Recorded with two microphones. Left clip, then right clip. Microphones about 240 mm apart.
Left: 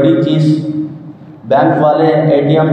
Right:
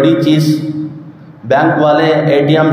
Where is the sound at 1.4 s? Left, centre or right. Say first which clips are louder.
Even; right.